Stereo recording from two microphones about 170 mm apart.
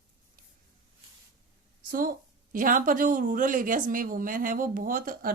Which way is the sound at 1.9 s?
55° right (ahead or behind).